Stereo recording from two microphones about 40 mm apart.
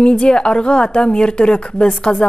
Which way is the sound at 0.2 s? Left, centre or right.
Left.